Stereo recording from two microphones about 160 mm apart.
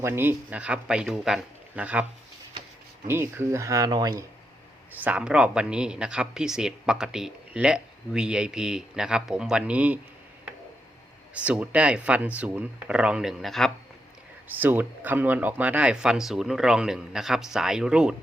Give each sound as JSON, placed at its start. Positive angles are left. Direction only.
{"t": 0.0, "sound": "speech", "side_deg": -15}
{"t": 3.1, "sound": "speech", "side_deg": -15}
{"t": 4.9, "sound": "speech", "side_deg": -10}
{"t": 11.4, "sound": "speech", "side_deg": -10}
{"t": 14.4, "sound": "speech", "side_deg": -10}